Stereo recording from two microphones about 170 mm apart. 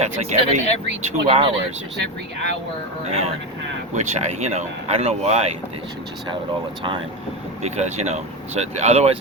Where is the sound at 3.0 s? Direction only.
40° right (ahead or behind).